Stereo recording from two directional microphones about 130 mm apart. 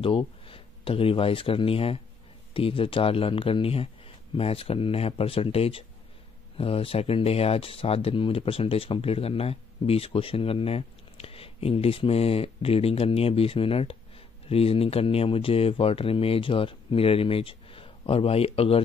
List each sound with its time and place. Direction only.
0.0 s speech: 45° left (ahead or behind)